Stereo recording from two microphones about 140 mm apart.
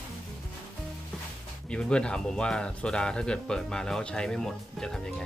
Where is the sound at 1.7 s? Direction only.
5° left (ahead or behind).